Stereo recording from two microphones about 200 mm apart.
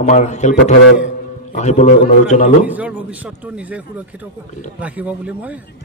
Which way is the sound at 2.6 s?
5° right (ahead or behind).